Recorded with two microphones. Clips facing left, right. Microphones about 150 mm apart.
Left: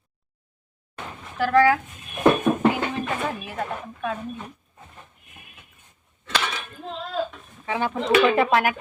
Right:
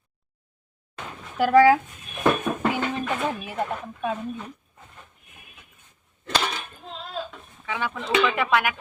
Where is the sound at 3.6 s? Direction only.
15° right (ahead or behind).